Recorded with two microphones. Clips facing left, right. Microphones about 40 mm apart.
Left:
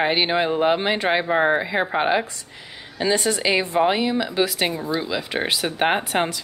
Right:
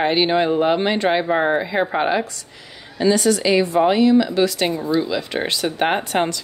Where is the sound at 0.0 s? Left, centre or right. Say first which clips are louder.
Right 3 dB; centre.